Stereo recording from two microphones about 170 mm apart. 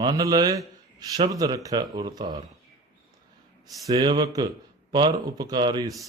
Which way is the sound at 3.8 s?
25° right (ahead or behind).